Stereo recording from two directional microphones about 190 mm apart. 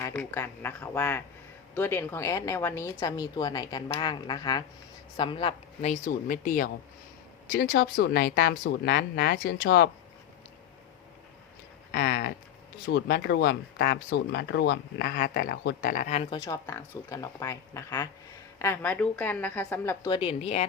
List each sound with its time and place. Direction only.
0.2 s a woman's voice: 10° left (ahead or behind); by 6.7 s 45° left (ahead or behind)
7.5 s speech: 55° left (ahead or behind)
11.9 s speech: 55° left (ahead or behind)
16.3 s speech: 15° left (ahead or behind)
20.1 s speech: 30° left (ahead or behind)